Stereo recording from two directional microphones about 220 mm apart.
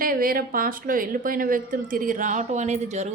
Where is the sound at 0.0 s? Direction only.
40° right (ahead or behind).